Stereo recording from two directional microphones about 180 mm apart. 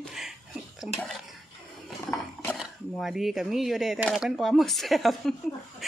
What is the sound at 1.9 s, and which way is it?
Speech, centre (ahead or behind).